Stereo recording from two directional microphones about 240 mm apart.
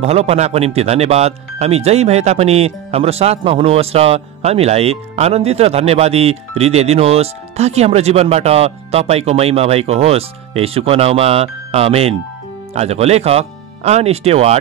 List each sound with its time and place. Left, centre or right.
0.0 s speech: right